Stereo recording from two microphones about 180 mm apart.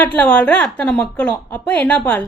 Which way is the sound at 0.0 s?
10° left (ahead or behind).